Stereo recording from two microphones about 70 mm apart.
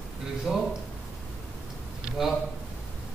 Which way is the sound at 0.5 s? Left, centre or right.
Centre.